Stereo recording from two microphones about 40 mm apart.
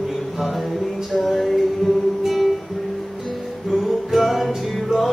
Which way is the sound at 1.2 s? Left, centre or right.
Centre.